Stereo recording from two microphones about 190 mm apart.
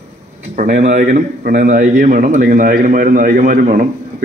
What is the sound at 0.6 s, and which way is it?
A man's voice, 40° right (ahead or behind).